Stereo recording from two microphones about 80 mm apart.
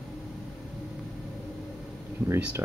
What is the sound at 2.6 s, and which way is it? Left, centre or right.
Speech, right.